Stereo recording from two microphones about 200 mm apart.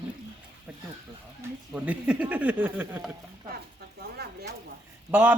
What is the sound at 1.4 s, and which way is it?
Speech, 5° right (ahead or behind).